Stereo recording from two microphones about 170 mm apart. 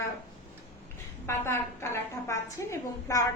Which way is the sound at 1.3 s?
15° left (ahead or behind).